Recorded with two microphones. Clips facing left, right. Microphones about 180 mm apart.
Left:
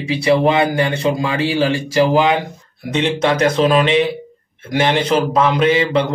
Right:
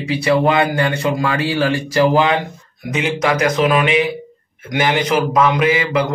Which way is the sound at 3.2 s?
30° left (ahead or behind).